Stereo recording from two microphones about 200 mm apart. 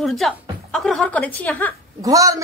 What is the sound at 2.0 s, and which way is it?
Speech, 15° right (ahead or behind).